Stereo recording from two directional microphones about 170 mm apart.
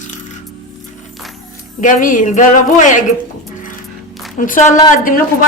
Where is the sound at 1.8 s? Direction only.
50° left (ahead or behind).